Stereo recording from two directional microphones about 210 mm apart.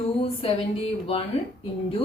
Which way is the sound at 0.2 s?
30° left (ahead or behind).